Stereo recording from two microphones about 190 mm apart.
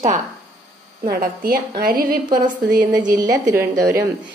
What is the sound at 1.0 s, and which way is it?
Speech, 50° right (ahead or behind).